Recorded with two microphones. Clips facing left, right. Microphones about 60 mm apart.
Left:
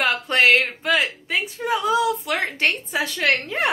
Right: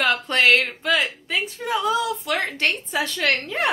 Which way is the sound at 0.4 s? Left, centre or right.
Centre.